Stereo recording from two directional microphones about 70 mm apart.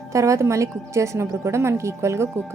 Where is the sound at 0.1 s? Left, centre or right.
Right.